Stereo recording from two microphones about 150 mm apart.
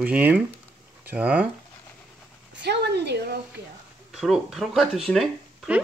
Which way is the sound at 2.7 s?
90° right.